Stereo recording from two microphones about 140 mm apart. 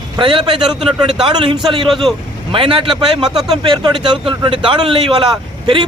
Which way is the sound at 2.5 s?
40° right (ahead or behind).